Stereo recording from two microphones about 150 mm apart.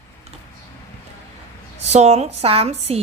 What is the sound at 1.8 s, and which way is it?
A woman's voice, 45° right (ahead or behind).